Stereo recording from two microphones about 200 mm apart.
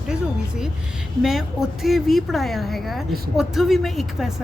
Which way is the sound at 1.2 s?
Centre (ahead or behind).